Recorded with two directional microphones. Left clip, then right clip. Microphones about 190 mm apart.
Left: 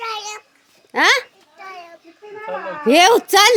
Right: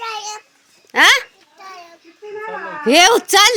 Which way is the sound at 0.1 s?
45° right (ahead or behind).